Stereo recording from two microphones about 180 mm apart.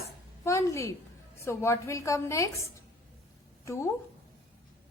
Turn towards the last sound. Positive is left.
turn(degrees=15)  # may be behind; listen again after turning